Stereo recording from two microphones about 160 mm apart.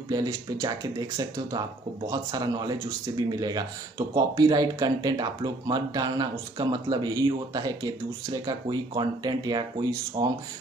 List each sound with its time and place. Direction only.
0.1 s speech: 25° right (ahead or behind)